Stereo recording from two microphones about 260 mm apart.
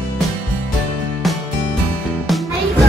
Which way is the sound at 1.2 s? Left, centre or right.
Centre.